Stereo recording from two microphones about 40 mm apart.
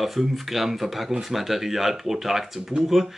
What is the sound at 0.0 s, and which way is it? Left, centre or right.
Speech, centre.